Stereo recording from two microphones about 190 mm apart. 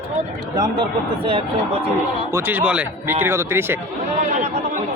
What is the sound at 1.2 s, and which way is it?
Speech, 30° right (ahead or behind).